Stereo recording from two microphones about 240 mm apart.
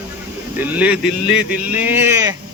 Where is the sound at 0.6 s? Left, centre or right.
Centre.